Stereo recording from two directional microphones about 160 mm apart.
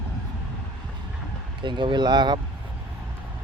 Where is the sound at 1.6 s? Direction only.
30° right (ahead or behind).